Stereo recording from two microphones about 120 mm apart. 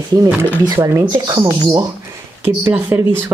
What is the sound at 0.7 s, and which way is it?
Speech, 25° right (ahead or behind).